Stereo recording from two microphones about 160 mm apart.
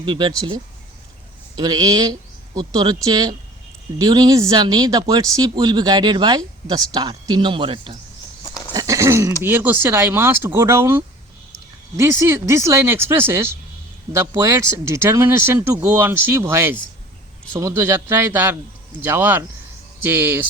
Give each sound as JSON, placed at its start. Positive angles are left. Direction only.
{"t": 0.0, "sound": "speech", "side_deg": -30}
{"t": 1.5, "sound": "speech", "side_deg": -25}
{"t": 8.4, "sound": "livestock", "side_deg": 20}
{"t": 8.7, "sound": "speech", "side_deg": -20}